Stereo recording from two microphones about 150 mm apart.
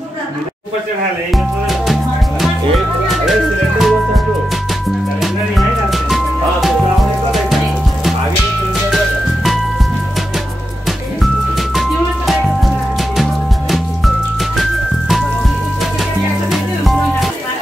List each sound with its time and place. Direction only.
1.3 s music: centre (ahead or behind)
3.1 s music: centre (ahead or behind)
5.2 s music: centre (ahead or behind)
8.9 s music: centre (ahead or behind)
11.5 s music: centre (ahead or behind)
16.4 s music: centre (ahead or behind)